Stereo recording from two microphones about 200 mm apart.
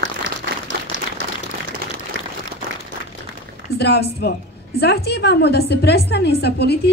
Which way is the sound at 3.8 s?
55° left (ahead or behind).